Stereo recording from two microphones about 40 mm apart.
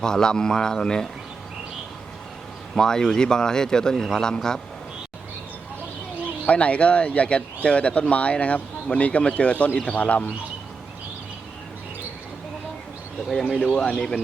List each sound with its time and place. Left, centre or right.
0.0 s speech: centre
2.7 s speech: centre
6.4 s speech: left
13.6 s speech: left
13.9 s speech: centre